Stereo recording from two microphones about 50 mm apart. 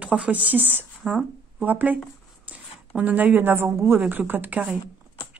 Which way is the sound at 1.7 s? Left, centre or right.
Right.